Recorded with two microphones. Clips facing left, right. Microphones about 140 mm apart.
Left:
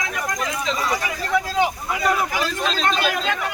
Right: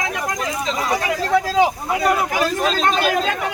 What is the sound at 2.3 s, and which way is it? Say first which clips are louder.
A man's voice: right 5 dB; 50° right (ahead or behind).